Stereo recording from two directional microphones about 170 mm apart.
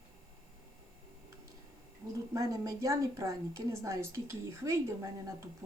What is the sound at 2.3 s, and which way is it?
A woman's voice, 20° right (ahead or behind).